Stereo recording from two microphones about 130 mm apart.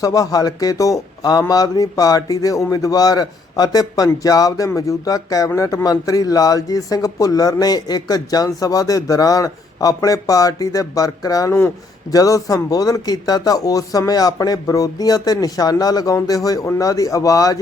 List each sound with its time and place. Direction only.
0.0 s a man's voice: 25° left (ahead or behind)